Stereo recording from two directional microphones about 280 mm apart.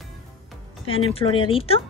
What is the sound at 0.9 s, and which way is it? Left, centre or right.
Speech, centre.